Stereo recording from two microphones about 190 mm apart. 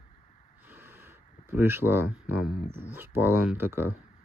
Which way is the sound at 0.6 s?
10° right (ahead or behind).